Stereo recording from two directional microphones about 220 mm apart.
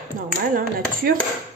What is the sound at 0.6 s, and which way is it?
Speech, 40° right (ahead or behind).